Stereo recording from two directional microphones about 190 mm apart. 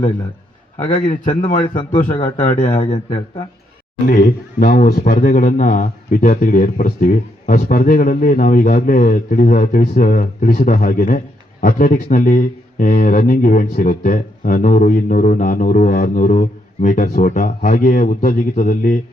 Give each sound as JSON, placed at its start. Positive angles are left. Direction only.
{"t": 0.9, "sound": "speech", "side_deg": 25}
{"t": 2.0, "sound": "speech", "side_deg": 40}
{"t": 2.4, "sound": "speech", "side_deg": 30}
{"t": 4.0, "sound": "speech", "side_deg": 50}